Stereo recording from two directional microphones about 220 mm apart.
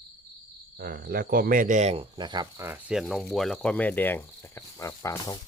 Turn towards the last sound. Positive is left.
turn(degrees=15)  # may be behind; listen again after turning